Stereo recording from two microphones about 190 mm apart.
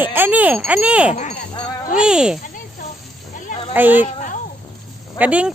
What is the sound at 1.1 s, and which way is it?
Speech, 40° left (ahead or behind).